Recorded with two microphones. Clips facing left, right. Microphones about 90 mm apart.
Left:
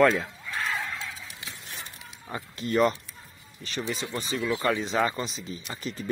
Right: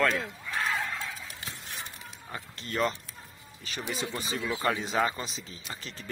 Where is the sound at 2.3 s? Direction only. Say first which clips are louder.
Left 8 dB; 20° left (ahead or behind).